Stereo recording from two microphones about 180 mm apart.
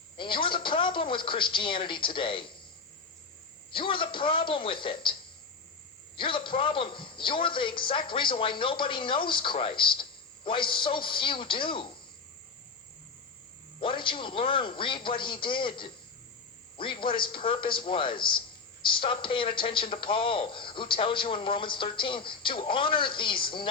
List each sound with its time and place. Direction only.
0.2 s a man's voice: 30° left (ahead or behind)
3.7 s a man's voice: 30° left (ahead or behind)
6.1 s a man's voice: 30° left (ahead or behind)
13.7 s a man's voice: 30° left (ahead or behind)